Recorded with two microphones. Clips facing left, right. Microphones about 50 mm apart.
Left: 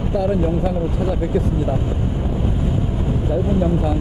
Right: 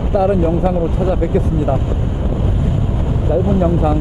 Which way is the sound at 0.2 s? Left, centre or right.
Right.